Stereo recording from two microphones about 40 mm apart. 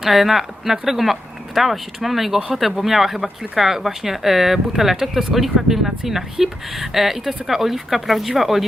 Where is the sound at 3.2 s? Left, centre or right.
Right.